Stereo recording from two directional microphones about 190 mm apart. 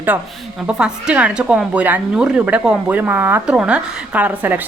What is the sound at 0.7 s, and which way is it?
A woman's voice, 5° right (ahead or behind).